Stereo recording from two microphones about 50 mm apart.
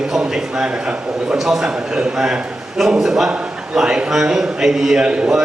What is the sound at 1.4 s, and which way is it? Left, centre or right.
Speech, centre.